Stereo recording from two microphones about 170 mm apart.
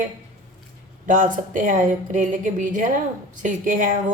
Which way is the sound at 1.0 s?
50° right (ahead or behind).